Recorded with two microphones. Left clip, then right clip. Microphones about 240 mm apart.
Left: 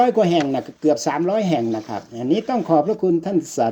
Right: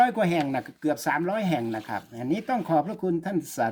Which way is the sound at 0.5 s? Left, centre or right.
Right.